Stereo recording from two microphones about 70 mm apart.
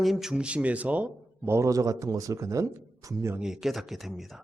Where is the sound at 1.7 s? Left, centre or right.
Right.